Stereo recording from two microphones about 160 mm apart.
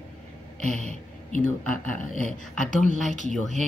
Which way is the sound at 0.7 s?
45° right (ahead or behind).